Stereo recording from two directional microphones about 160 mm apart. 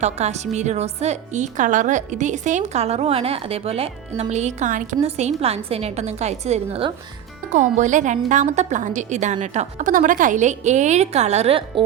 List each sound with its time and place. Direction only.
0.0 s a woman's voice: 45° right (ahead or behind)
7.5 s a woman's voice: 50° right (ahead or behind)